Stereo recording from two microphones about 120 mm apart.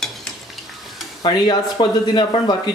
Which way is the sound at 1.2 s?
35° left (ahead or behind).